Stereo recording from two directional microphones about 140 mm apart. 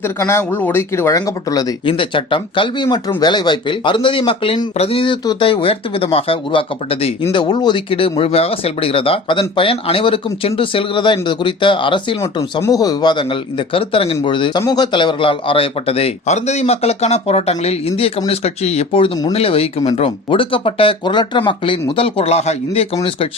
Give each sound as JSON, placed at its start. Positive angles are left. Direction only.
{"t": 0.0, "sound": "speech", "side_deg": 20}
{"t": 1.9, "sound": "speech", "side_deg": 40}
{"t": 7.3, "sound": "speech", "side_deg": 30}
{"t": 12.2, "sound": "a man's voice", "side_deg": 25}